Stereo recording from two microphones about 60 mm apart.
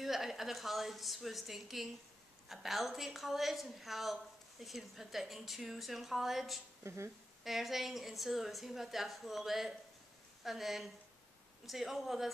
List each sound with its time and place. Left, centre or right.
0.0 s a woman's voice: centre
6.8 s speech: right
7.4 s a woman's voice: centre